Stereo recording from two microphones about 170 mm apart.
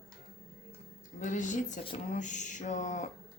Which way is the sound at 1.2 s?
50° left (ahead or behind).